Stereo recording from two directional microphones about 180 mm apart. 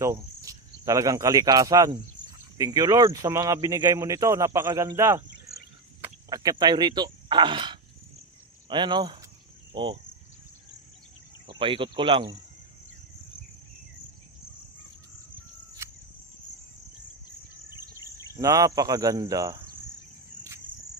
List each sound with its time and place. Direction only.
0.0 s speech: 15° right (ahead or behind)
6.2 s speech: 20° right (ahead or behind)
11.5 s speech: 30° right (ahead or behind)
15.8 s cricket: 15° right (ahead or behind)
18.3 s speech: 20° right (ahead or behind)